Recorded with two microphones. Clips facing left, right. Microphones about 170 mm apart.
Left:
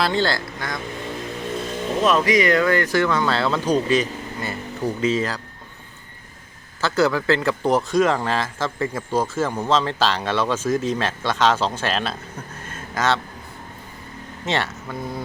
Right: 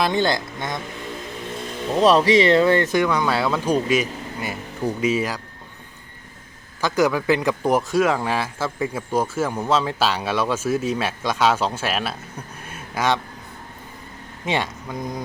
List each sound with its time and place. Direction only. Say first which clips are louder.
0.0 s speech: right 1 dB; 15° right (ahead or behind)
2.0 s speech: right 3 dB; 30° right (ahead or behind); by 5.4 s 10° right (ahead or behind)
6.8 s speech: even; 10° right (ahead or behind)
12.6 s a sound: even; 10° right (ahead or behind)
14.4 s speech: even; 15° right (ahead or behind)